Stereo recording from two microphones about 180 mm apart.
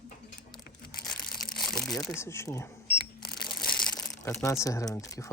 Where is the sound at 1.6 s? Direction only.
Centre (ahead or behind).